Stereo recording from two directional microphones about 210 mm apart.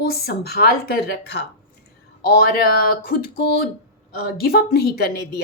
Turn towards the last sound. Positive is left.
turn(degrees=50)  # may be behind; listen again after turning